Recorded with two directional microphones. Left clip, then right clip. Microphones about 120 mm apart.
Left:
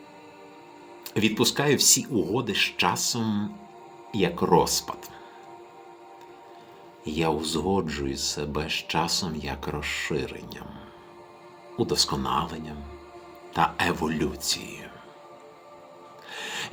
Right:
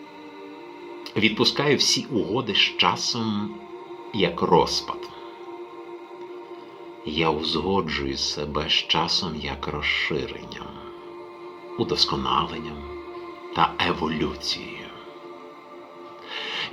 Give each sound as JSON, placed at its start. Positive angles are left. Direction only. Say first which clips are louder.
{"t": 1.1, "sound": "speech", "louder": "right 3 dB", "side_deg": 40}
{"t": 7.0, "sound": "speech", "louder": "right 3 dB", "side_deg": 40}
{"t": 11.8, "sound": "speech", "louder": "right 2 dB", "side_deg": 40}